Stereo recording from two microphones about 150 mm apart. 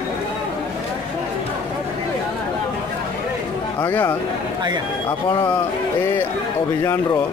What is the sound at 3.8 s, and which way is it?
Speech, 15° left (ahead or behind).